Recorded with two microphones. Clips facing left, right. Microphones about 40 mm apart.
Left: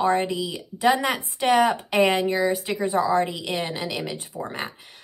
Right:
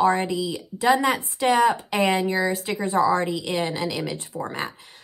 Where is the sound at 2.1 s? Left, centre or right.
Centre.